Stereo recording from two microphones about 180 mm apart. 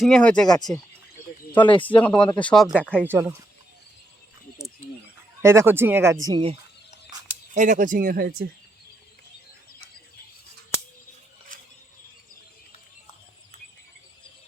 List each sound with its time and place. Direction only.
0.0 s speech: 5° left (ahead or behind)
0.4 s speech: 20° left (ahead or behind)
2.0 s speech: 5° left (ahead or behind)
3.1 s speech: 10° right (ahead or behind)
5.4 s speech: 15° right (ahead or behind)
7.5 s speech: 45° right (ahead or behind)